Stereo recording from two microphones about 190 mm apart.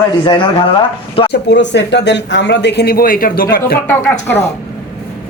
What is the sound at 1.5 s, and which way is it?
Speech, 70° left (ahead or behind).